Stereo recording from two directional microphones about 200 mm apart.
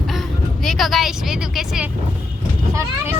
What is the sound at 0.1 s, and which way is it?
Speech, centre (ahead or behind).